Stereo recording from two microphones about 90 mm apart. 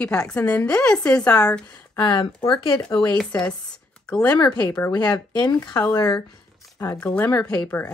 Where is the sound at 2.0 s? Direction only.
60° left (ahead or behind).